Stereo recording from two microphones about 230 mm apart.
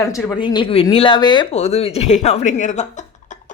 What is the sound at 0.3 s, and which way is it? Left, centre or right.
Speech, left.